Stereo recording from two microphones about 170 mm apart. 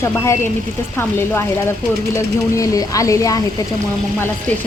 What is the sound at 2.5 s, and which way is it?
Speech, 20° left (ahead or behind).